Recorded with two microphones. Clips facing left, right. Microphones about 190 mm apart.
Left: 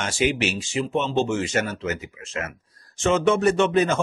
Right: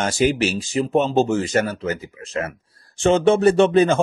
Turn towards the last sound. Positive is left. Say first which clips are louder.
# right 5 dB
turn(degrees=-30)  # may be behind; listen again after turning